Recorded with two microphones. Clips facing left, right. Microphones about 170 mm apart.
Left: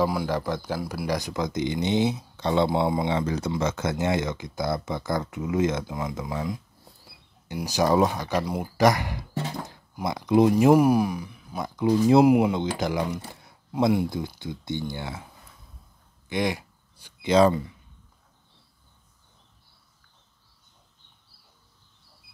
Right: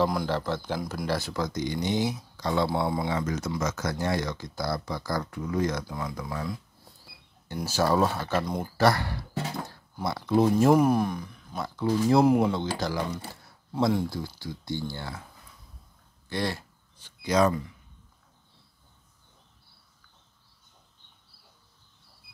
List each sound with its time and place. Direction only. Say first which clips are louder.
0.0 s speech: left 1 dB; 10° left (ahead or behind)
16.3 s a sound: left 4 dB; 15° left (ahead or behind)
17.3 s speech: left 4 dB; 30° left (ahead or behind)